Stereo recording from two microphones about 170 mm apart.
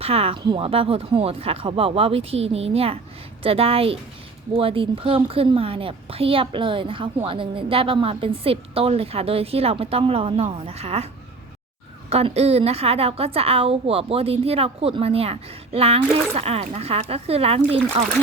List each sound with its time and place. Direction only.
0.0 s a woman's voice: 35° right (ahead or behind)